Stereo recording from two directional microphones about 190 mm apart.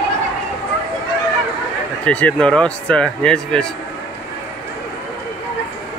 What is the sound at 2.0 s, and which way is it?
Speech, 5° left (ahead or behind).